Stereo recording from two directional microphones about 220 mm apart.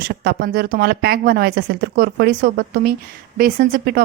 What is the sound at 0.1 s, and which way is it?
A woman's voice, 45° right (ahead or behind).